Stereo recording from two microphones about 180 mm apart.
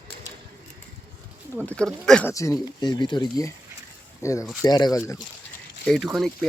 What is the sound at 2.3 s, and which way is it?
Speech, 20° left (ahead or behind).